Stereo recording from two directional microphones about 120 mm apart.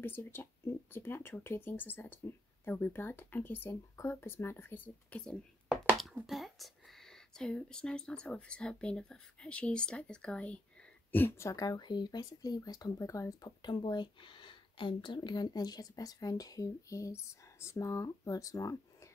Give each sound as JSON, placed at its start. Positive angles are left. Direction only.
{"t": 0.0, "sound": "speech", "side_deg": 15}
{"t": 5.7, "sound": "a sound", "side_deg": 0}
{"t": 6.2, "sound": "speech", "side_deg": 0}